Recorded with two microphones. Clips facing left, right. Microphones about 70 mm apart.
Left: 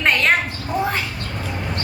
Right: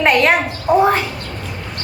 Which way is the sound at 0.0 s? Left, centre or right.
Centre.